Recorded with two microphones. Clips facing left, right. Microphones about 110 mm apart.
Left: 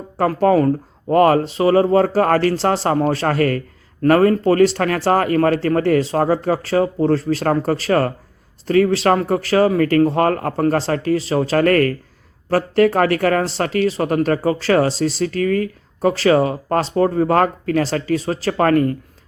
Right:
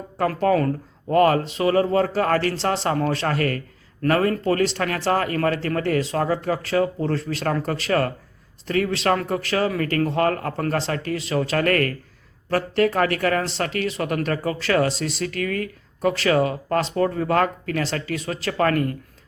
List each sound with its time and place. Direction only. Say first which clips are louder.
0.3 s speech: left 6 dB; 35° left (ahead or behind)